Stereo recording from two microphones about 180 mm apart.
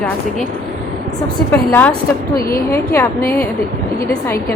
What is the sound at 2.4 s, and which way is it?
Speech, 55° left (ahead or behind).